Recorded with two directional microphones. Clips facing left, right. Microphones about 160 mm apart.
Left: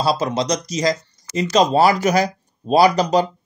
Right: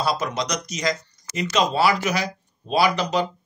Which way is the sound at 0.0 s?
30° left (ahead or behind).